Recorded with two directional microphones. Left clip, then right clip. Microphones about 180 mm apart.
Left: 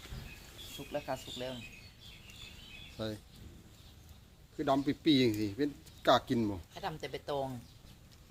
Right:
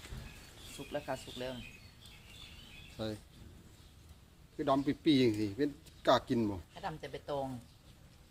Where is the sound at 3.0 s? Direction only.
Centre (ahead or behind).